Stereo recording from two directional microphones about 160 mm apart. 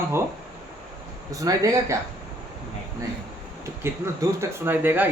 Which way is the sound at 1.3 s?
20° right (ahead or behind).